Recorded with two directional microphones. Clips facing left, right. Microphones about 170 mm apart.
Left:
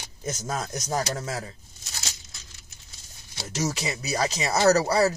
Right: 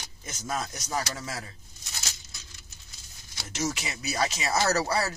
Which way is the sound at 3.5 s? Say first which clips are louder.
Left 3 dB; 35° left (ahead or behind).